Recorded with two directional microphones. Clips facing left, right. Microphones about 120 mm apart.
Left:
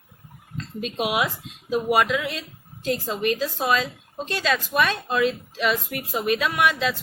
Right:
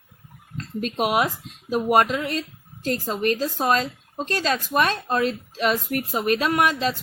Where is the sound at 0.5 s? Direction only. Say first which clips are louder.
Right 2 dB; 45° right (ahead or behind).